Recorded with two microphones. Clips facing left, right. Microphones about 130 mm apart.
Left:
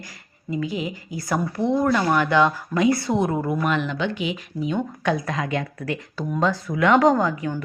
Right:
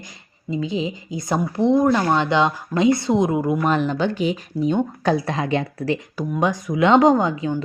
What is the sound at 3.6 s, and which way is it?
Speech, 35° right (ahead or behind).